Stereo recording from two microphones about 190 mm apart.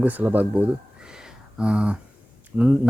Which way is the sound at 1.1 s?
5° right (ahead or behind).